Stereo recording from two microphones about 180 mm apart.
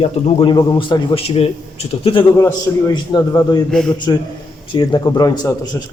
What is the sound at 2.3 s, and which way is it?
A man's voice, 15° left (ahead or behind).